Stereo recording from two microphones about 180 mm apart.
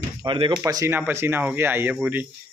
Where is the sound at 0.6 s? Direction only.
15° right (ahead or behind).